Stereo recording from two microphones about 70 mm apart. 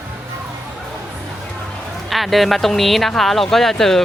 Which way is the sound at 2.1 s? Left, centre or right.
Centre.